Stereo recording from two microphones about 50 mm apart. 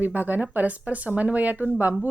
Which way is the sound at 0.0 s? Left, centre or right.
Right.